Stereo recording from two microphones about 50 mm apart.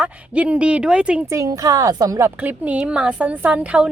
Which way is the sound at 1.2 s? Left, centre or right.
Right.